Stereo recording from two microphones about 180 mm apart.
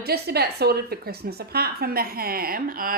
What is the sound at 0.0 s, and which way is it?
A woman's voice, 60° right (ahead or behind).